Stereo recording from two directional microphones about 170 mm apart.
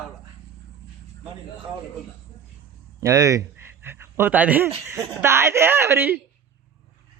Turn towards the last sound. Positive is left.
turn(degrees=-15)  # may be behind; listen again after turning